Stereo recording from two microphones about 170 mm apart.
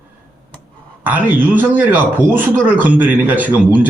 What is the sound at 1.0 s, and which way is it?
A man's voice, 10° right (ahead or behind).